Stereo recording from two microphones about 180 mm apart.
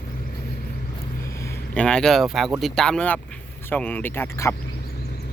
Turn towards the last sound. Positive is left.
turn(degrees=15)  # may be behind; listen again after turning